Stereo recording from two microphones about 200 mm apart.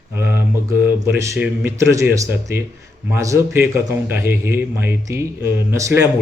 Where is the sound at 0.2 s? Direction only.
10° right (ahead or behind).